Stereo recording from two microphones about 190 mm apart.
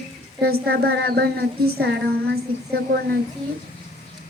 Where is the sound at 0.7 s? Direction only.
55° right (ahead or behind).